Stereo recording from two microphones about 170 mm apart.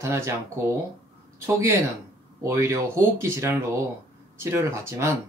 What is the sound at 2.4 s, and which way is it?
Speech, 15° right (ahead or behind).